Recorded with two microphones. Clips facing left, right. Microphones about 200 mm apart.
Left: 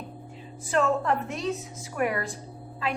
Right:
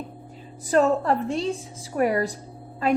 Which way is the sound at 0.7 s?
35° right (ahead or behind).